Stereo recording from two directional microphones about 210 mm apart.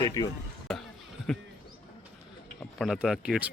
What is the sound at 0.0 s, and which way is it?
Speech, 20° left (ahead or behind).